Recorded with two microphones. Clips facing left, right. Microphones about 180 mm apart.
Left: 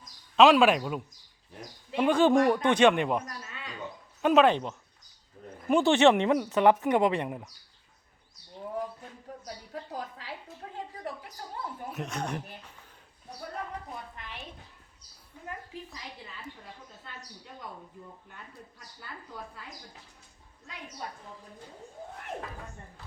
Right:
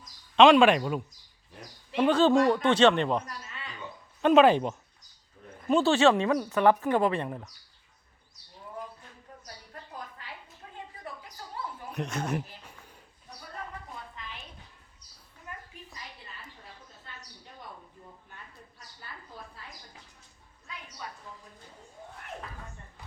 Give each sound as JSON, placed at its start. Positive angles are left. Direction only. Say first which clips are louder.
{"t": 0.3, "sound": "speech", "louder": "right 2 dB", "side_deg": 5}
{"t": 4.4, "sound": "speech", "louder": "right 3 dB", "side_deg": -10}
{"t": 5.6, "sound": "speech", "louder": "left 1 dB", "side_deg": 15}
{"t": 9.7, "sound": "a sound", "louder": "left 6 dB", "side_deg": 90}
{"t": 11.9, "sound": "speech", "louder": "right 3 dB", "side_deg": 0}
{"t": 14.2, "sound": "a sound", "louder": "right 1 dB", "side_deg": 55}